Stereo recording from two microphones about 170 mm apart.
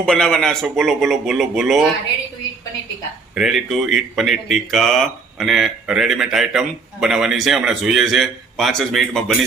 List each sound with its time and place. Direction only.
0.0 s speech: 5° left (ahead or behind)
3.3 s speech: centre (ahead or behind)